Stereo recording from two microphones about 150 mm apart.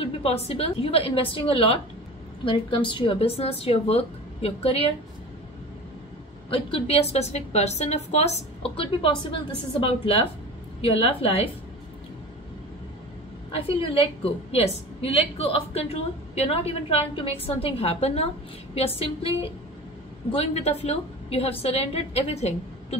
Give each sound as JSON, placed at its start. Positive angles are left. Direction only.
{"t": 0.0, "sound": "a woman's voice", "side_deg": 40}
{"t": 6.5, "sound": "a woman's voice", "side_deg": 40}
{"t": 13.7, "sound": "a woman's voice", "side_deg": 40}